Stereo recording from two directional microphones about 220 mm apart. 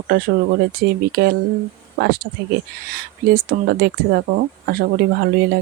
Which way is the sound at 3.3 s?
45° right (ahead or behind).